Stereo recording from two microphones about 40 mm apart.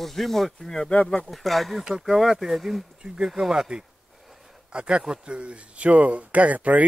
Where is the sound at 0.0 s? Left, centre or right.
Centre.